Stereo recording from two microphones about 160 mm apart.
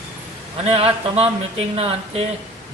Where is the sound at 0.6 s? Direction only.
35° right (ahead or behind).